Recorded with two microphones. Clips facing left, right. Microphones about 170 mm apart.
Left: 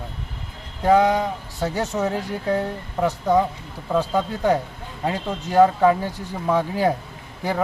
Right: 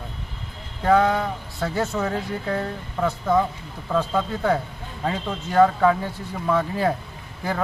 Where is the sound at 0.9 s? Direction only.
15° left (ahead or behind).